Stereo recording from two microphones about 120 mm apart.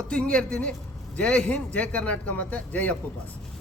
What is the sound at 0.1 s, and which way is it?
A man's voice, 10° left (ahead or behind).